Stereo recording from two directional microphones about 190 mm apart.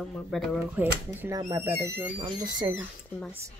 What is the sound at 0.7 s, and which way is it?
Speech, 10° right (ahead or behind).